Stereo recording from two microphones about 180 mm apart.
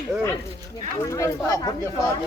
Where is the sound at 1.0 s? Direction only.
15° left (ahead or behind).